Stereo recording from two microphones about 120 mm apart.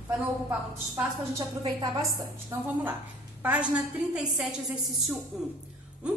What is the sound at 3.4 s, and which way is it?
A woman's voice, 15° right (ahead or behind).